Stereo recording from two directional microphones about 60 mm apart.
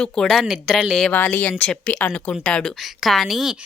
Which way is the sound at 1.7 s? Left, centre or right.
Centre.